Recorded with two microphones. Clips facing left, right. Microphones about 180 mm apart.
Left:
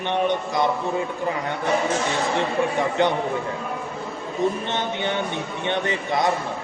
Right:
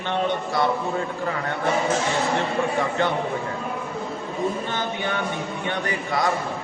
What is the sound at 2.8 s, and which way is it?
Speech, 20° left (ahead or behind).